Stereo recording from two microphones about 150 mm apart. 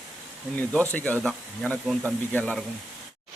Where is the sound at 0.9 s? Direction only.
10° left (ahead or behind).